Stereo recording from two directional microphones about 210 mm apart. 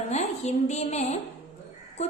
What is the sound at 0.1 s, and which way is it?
A woman's voice, 30° left (ahead or behind).